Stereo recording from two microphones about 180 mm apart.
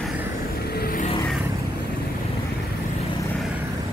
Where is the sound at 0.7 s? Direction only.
55° left (ahead or behind).